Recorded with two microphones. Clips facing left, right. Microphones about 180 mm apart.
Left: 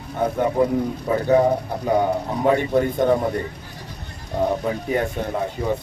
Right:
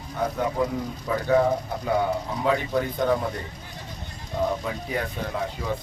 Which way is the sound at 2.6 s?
50° left (ahead or behind).